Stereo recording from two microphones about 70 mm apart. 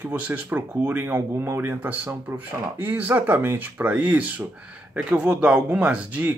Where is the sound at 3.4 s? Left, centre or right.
Right.